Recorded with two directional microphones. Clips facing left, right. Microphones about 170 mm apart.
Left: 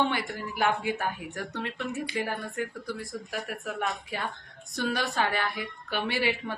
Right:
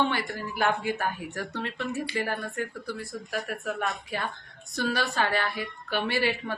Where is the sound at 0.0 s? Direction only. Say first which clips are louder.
Right 1 dB; 15° left (ahead or behind).